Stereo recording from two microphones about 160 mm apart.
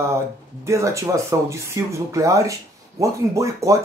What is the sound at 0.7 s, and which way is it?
Speech, 20° right (ahead or behind).